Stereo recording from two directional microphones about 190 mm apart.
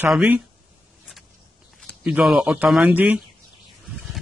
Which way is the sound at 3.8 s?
Centre (ahead or behind).